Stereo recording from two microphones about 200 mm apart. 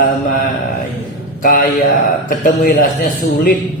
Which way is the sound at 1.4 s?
45° left (ahead or behind).